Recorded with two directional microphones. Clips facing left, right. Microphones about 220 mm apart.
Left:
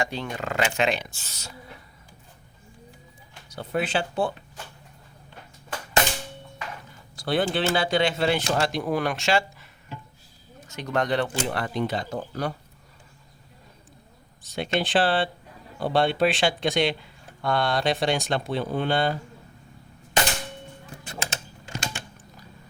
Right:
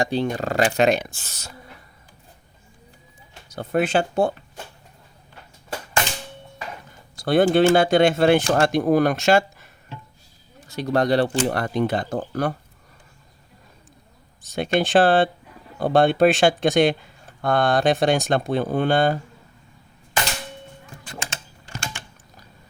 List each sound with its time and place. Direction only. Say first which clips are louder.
0.0 s speech: right 7 dB; 35° right (ahead or behind); by 1.5 s 50° right (ahead or behind)
3.5 s speech: right 6 dB; 50° right (ahead or behind)
7.2 s speech: right 8 dB; 45° right (ahead or behind)
10.7 s speech: right 6 dB; 35° right (ahead or behind); by 12.5 s 50° right (ahead or behind)
14.4 s speech: right 5 dB; 45° right (ahead or behind)